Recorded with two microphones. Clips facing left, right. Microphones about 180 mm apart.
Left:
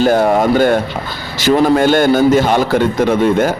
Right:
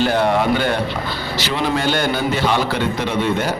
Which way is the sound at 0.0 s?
45° left (ahead or behind).